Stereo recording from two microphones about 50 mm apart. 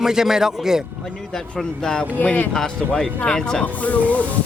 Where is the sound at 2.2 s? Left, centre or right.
Left.